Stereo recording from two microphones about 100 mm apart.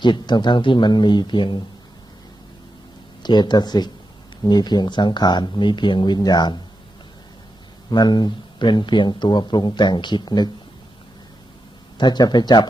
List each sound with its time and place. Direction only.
0.0 s speech: 50° left (ahead or behind)
3.2 s speech: 45° left (ahead or behind)
7.9 s speech: 45° left (ahead or behind)
11.9 s speech: 45° left (ahead or behind)